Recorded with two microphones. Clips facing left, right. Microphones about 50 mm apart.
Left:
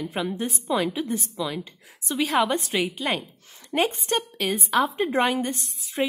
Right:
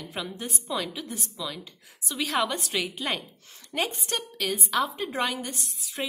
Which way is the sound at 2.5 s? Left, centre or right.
Left.